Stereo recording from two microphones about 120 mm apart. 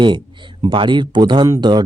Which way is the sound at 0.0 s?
40° right (ahead or behind).